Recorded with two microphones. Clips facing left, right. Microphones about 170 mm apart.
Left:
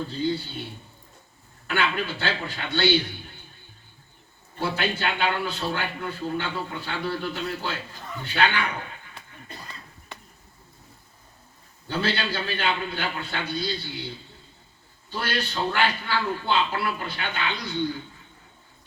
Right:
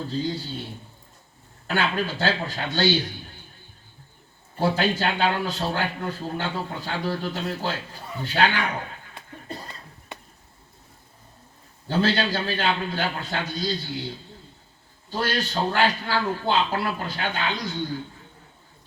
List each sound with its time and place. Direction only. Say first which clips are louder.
0.1 s a man's voice: left 1 dB; 40° right (ahead or behind)
1.6 s a man's voice: right 1 dB; 40° right (ahead or behind)
4.6 s a man's voice: right 4 dB; 40° right (ahead or behind)
9.1 s a sound: right 6 dB; 30° right (ahead or behind)
11.9 s a man's voice: right 4 dB; 40° right (ahead or behind)
15.1 s a man's voice: right 3 dB; 45° right (ahead or behind)